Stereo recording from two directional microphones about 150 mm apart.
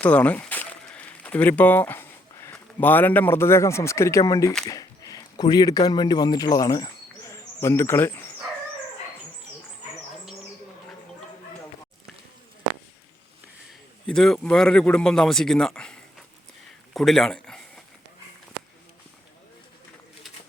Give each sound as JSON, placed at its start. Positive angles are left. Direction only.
{"t": 0.0, "sound": "speech", "side_deg": 10}
{"t": 14.1, "sound": "speech", "side_deg": 5}
{"t": 16.9, "sound": "a sound", "side_deg": 0}